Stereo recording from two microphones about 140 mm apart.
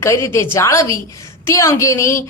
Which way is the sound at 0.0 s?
20° left (ahead or behind).